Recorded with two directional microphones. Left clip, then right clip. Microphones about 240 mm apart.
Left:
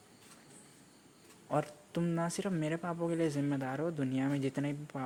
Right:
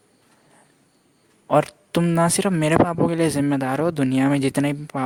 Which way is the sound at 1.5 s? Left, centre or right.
Right.